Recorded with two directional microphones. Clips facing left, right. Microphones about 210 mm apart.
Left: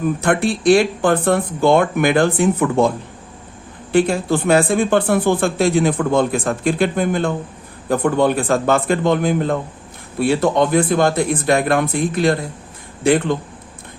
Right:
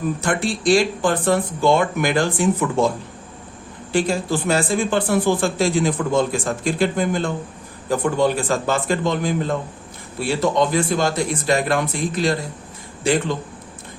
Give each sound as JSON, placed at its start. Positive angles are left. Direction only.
{"t": 0.2, "sound": "speech", "side_deg": 55}
{"t": 3.9, "sound": "speech", "side_deg": 60}